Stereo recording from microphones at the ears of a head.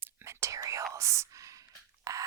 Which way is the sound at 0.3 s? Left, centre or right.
Right.